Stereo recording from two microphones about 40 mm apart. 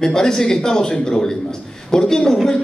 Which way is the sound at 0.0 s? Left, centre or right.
Centre.